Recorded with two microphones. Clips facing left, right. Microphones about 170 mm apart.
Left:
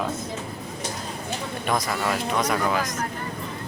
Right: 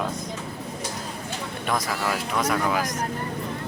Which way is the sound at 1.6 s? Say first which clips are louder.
Left 1 dB; centre (ahead or behind).